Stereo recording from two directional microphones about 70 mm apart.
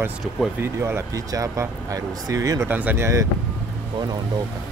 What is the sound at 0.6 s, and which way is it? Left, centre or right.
Speech, right.